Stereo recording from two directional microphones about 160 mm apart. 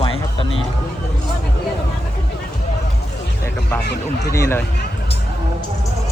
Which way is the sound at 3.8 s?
90° left.